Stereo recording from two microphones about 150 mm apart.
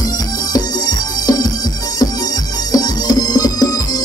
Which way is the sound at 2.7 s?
25° left (ahead or behind).